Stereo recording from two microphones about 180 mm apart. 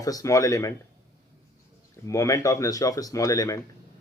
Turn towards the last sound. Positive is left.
turn(degrees=20)  # may be behind; listen again after turning